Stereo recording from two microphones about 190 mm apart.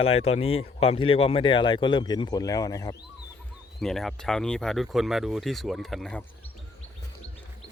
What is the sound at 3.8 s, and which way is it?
Speech, centre (ahead or behind).